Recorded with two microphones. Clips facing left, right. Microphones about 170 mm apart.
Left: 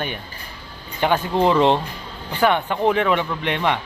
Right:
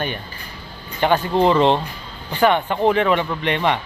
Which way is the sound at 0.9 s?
10° left (ahead or behind).